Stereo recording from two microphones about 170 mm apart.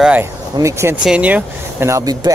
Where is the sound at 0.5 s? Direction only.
15° right (ahead or behind).